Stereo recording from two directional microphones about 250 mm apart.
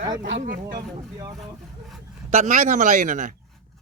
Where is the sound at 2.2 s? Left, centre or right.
Right.